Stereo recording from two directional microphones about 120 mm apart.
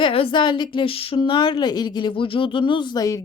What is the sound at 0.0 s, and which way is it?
A woman's voice, 50° left (ahead or behind).